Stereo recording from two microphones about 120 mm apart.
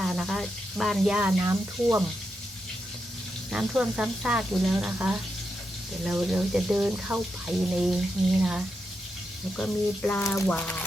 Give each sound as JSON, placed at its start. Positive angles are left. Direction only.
{"t": 0.0, "sound": "speech", "side_deg": 0}
{"t": 1.4, "sound": "speech", "side_deg": -25}
{"t": 3.5, "sound": "speech", "side_deg": -5}
{"t": 9.6, "sound": "speech", "side_deg": 5}
{"t": 10.2, "sound": "speech", "side_deg": 20}
{"t": 10.5, "sound": "speech", "side_deg": 10}